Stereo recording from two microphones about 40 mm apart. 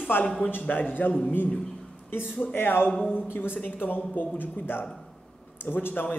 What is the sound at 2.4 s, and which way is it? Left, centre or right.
Speech, left.